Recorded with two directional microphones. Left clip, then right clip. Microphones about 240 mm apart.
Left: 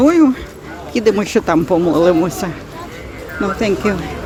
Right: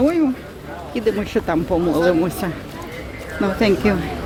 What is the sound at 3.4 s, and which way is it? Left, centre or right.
Speech, centre.